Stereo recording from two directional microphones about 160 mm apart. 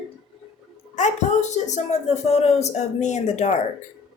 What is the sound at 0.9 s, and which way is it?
A child's voice, 45° left (ahead or behind).